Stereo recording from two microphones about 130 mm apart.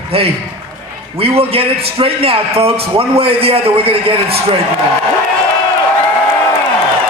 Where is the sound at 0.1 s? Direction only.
45° right (ahead or behind).